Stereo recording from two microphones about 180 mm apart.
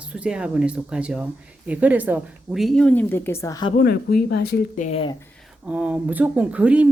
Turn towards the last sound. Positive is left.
turn(degrees=-5)  # may be behind; listen again after turning